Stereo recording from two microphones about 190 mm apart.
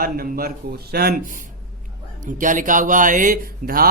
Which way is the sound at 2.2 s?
45° right (ahead or behind).